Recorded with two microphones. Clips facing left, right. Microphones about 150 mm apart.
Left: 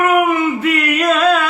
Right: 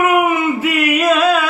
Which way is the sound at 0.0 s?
10° right (ahead or behind).